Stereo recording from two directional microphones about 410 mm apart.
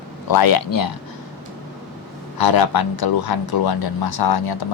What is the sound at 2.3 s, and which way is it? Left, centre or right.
Speech, left.